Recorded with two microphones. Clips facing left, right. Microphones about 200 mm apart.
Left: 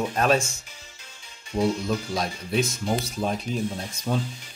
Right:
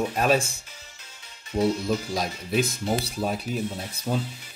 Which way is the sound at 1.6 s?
5° right (ahead or behind).